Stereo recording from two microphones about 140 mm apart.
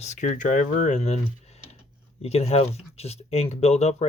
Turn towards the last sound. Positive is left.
turn(degrees=50)  # may be behind; listen again after turning